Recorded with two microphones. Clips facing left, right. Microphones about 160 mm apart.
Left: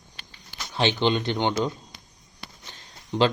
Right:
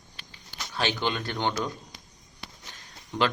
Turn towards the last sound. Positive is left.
turn(degrees=20)  # may be behind; listen again after turning